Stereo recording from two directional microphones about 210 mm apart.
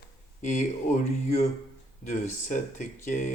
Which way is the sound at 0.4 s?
35° left (ahead or behind).